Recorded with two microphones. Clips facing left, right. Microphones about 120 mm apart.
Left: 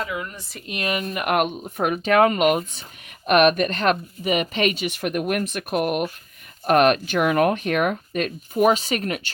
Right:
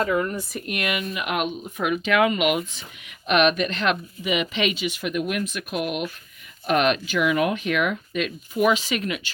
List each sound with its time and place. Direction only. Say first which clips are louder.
0.0 s speech: right 6 dB; 50° right (ahead or behind)
0.7 s speech: left 2 dB; 30° left (ahead or behind)